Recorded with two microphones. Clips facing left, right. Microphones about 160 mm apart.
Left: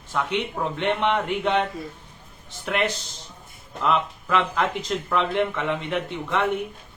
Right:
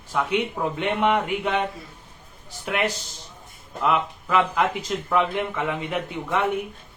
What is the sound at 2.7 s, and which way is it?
A man's voice, 5° right (ahead or behind).